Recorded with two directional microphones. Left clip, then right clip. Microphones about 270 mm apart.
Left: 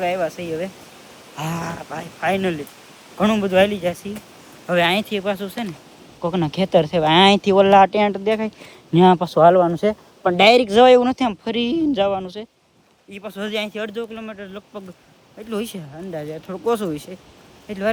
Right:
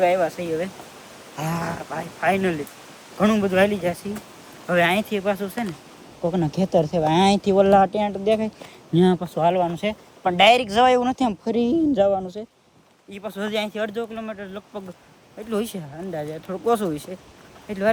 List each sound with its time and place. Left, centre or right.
0.0 s speech: centre
8.2 s speech: centre
9.4 s speech: centre
9.6 s speech: left
10.2 s speech: centre